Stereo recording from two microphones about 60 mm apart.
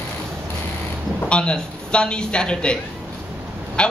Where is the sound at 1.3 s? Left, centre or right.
Centre.